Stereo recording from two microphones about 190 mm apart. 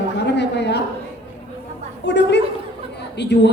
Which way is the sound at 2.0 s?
65° left (ahead or behind).